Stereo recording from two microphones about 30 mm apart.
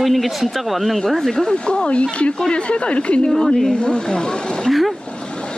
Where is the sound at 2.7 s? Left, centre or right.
Left.